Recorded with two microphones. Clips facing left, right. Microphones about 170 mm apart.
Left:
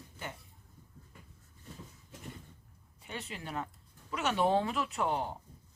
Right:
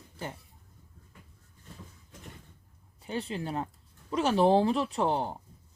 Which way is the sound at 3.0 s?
30° right (ahead or behind).